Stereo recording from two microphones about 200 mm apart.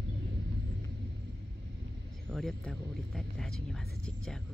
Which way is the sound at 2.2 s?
5° left (ahead or behind).